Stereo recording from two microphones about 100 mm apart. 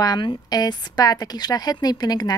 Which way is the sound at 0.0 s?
40° left (ahead or behind).